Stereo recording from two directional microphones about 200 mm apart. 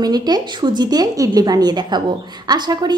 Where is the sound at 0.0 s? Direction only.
20° right (ahead or behind).